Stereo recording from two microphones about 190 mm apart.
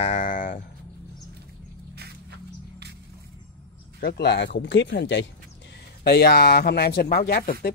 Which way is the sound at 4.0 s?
55° left (ahead or behind).